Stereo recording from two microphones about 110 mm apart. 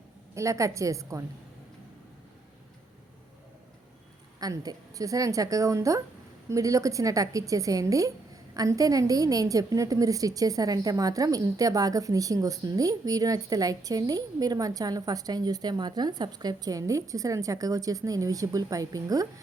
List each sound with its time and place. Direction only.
0.3 s a woman's voice: 30° right (ahead or behind)
4.4 s a woman's voice: 35° right (ahead or behind)